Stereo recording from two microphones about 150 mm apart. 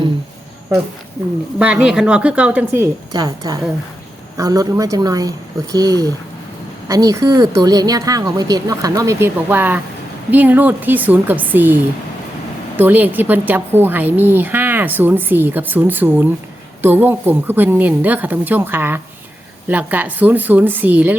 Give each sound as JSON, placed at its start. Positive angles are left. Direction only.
{"t": 1.5, "sound": "a woman's voice", "side_deg": -10}